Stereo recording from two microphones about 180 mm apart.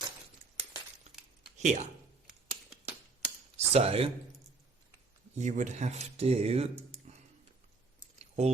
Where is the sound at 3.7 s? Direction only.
35° right (ahead or behind).